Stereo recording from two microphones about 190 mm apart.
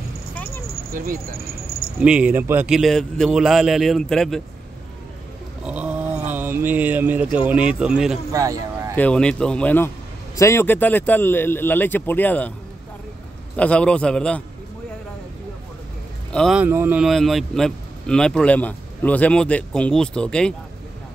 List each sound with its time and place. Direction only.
0.8 s keys jangling: 50° right (ahead or behind)
2.0 s speech: 5° right (ahead or behind)
5.7 s a sound: 5° right (ahead or behind)
6.3 s speech: 10° right (ahead or behind)
8.3 s speech: 20° right (ahead or behind)
8.9 s speech: 5° left (ahead or behind)
13.6 s speech: 5° left (ahead or behind)
16.3 s speech: centre (ahead or behind)